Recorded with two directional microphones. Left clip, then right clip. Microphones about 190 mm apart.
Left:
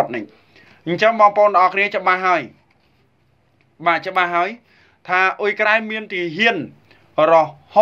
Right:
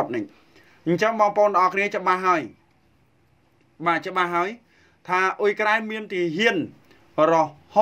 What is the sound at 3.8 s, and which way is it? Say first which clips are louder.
Speech: left 5 dB; 30° right (ahead or behind).